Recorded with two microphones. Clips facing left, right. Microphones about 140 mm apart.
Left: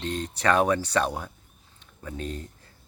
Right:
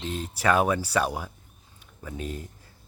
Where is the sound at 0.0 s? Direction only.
5° right (ahead or behind).